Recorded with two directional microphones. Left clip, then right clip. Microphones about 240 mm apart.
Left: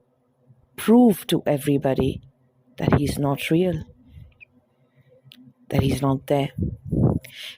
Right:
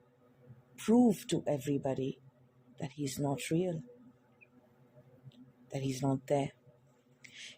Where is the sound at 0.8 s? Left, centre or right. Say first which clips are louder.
Left 12 dB; left.